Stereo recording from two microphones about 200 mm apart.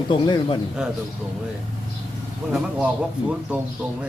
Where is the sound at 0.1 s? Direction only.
25° left (ahead or behind).